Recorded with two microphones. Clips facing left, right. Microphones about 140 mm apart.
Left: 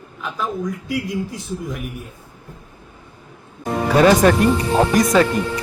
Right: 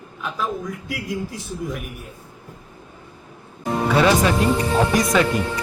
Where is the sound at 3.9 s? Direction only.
45° left (ahead or behind).